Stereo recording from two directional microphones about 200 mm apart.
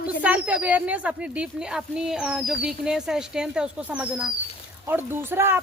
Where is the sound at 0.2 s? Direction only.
5° right (ahead or behind).